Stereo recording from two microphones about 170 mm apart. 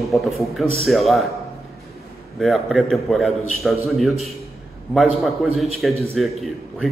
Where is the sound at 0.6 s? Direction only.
40° right (ahead or behind).